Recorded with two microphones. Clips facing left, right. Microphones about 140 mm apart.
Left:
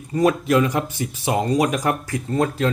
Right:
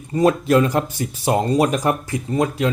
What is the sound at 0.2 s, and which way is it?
Speech, 30° right (ahead or behind).